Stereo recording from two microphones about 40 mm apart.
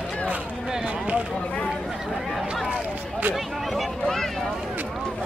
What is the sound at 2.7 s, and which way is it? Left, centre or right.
Run, right.